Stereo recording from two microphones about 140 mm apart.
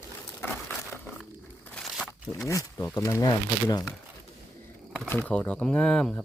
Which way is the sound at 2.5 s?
25° left (ahead or behind).